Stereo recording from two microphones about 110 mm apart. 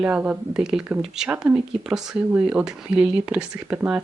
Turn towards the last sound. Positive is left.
turn(degrees=-10)  # may be behind; listen again after turning